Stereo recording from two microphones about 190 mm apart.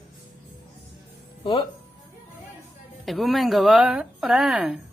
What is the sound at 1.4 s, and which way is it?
Speech, 25° left (ahead or behind).